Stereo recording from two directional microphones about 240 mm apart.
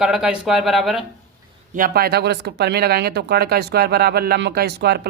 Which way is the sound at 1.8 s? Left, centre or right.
Right.